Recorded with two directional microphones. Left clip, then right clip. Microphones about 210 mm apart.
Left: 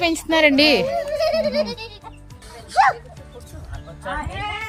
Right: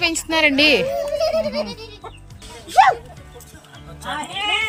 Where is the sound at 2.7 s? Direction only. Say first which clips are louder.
Right 3 dB; 45° right (ahead or behind).